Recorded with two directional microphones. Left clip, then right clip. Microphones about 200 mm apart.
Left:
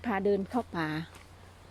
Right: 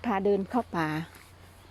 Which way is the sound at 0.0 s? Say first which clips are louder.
Right 2 dB; 25° right (ahead or behind).